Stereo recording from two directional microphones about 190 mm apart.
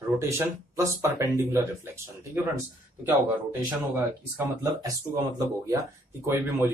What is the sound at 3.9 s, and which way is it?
Speech, 15° right (ahead or behind).